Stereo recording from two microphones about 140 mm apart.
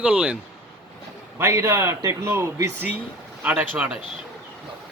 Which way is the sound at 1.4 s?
20° right (ahead or behind).